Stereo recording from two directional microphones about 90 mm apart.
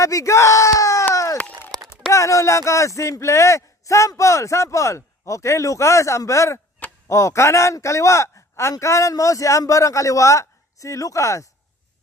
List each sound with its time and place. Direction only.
0.0 s speech: 35° left (ahead or behind)
1.1 s a sound: 35° left (ahead or behind)
1.9 s speech: 35° left (ahead or behind)